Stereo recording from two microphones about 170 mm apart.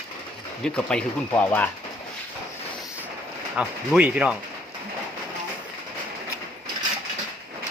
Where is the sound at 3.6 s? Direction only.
5° right (ahead or behind).